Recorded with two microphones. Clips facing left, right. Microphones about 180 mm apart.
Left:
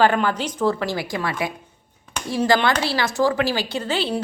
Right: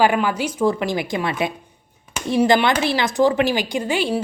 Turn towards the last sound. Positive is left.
turn(degrees=-15)  # may be behind; listen again after turning